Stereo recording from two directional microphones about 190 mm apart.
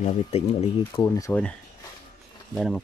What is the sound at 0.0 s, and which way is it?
Speech, 35° left (ahead or behind).